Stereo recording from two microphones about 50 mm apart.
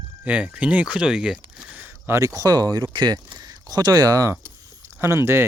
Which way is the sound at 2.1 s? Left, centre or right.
Right.